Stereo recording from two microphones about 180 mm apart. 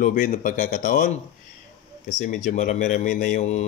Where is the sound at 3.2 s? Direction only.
40° left (ahead or behind).